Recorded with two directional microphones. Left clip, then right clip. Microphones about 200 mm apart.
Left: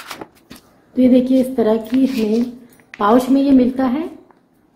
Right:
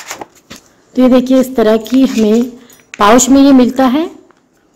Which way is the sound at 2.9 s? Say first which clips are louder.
Right 7 dB; 50° right (ahead or behind).